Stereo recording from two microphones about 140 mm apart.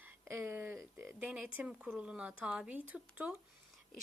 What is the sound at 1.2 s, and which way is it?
Speech, 5° right (ahead or behind).